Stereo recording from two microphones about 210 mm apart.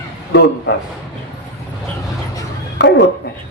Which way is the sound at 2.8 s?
60° left (ahead or behind).